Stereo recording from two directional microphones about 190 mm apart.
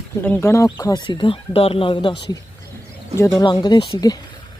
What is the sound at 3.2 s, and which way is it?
Speech, 15° left (ahead or behind).